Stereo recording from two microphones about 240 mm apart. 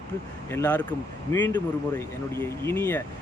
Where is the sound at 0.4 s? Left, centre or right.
Centre.